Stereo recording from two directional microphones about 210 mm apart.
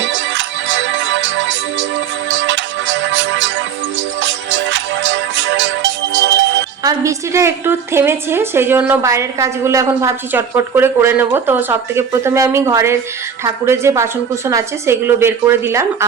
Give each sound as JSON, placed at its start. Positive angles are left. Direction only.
{"t": 0.0, "sound": "music", "side_deg": -60}
{"t": 6.8, "sound": "a woman's voice", "side_deg": -15}